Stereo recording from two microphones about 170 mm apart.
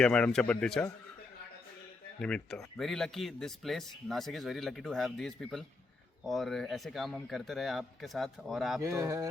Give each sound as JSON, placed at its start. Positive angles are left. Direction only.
{"t": 0.0, "sound": "speech", "side_deg": 5}
{"t": 2.2, "sound": "speech", "side_deg": 5}
{"t": 8.8, "sound": "speech", "side_deg": -20}